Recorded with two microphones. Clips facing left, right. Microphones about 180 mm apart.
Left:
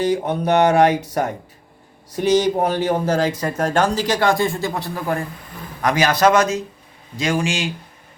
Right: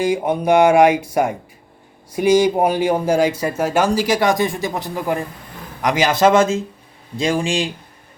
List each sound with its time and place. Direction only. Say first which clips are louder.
0.0 s speech: right 1 dB; 10° right (ahead or behind); by 7.7 s 30° right (ahead or behind)